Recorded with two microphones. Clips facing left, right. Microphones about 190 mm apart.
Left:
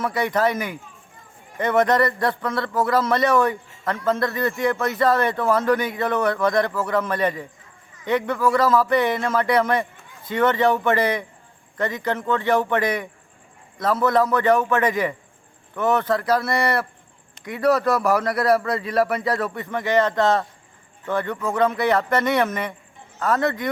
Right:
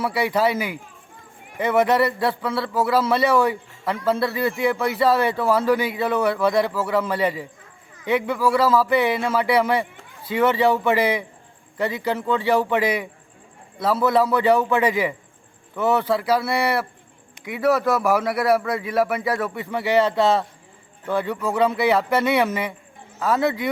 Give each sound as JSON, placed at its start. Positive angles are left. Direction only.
{"t": 0.0, "sound": "a man's voice", "side_deg": -10}
{"t": 19.8, "sound": "a man's voice", "side_deg": -15}